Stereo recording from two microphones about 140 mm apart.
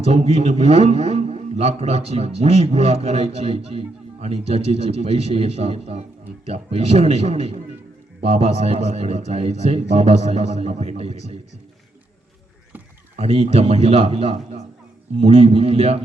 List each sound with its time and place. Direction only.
0.0 s a man's voice: 50° right (ahead or behind)
13.1 s a man's voice: 45° right (ahead or behind)